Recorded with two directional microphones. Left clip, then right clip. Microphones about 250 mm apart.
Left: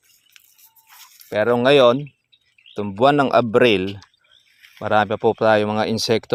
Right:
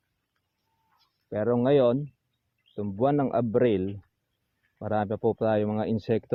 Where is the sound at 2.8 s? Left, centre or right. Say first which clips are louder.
Left 9 dB; left.